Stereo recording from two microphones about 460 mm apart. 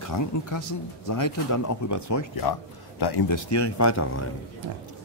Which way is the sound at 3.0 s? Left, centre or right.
Left.